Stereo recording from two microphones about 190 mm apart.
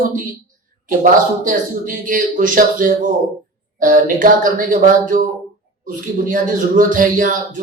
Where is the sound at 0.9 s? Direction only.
45° right (ahead or behind).